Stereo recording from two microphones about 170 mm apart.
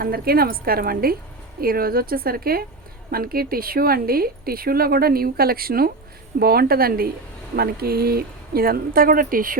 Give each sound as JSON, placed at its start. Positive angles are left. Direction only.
{"t": 0.0, "sound": "a woman's voice", "side_deg": -60}